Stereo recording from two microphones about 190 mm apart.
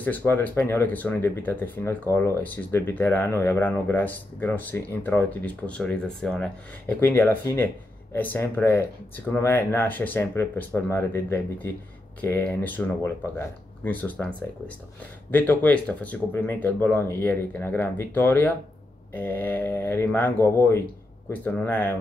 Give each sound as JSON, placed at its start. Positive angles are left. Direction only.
{"t": 0.0, "sound": "speech", "side_deg": 10}
{"t": 15.3, "sound": "speech", "side_deg": 10}